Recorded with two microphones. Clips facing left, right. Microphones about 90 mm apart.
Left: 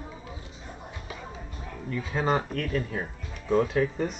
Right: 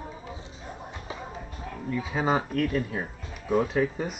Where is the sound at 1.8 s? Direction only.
5° right (ahead or behind).